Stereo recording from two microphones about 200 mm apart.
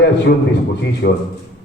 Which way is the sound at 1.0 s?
60° left (ahead or behind).